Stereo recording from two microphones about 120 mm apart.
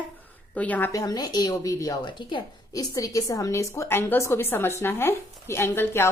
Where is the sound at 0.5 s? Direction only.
10° left (ahead or behind).